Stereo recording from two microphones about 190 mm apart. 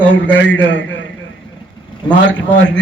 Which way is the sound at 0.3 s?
10° left (ahead or behind).